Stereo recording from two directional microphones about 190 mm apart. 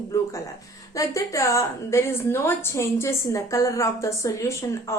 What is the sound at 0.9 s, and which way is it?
A woman's voice, 15° left (ahead or behind).